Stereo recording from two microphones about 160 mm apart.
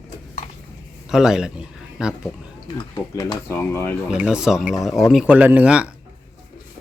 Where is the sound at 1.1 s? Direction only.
5° right (ahead or behind).